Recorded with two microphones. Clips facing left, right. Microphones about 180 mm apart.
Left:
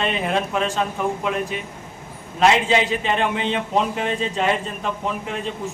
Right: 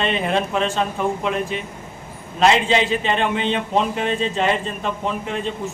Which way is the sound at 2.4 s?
5° left (ahead or behind).